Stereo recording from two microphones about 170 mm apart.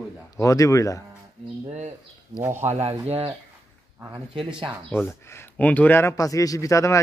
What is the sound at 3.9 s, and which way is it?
Speech, 15° right (ahead or behind).